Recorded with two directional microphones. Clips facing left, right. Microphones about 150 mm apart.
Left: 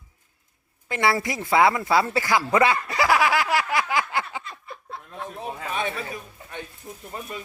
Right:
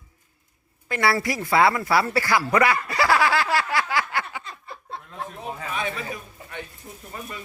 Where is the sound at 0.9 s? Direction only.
20° left (ahead or behind).